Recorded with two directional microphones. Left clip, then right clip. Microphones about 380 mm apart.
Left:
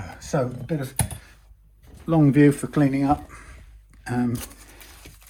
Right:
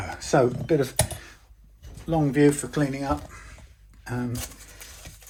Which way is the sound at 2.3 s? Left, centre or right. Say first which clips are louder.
Left 2 dB; centre.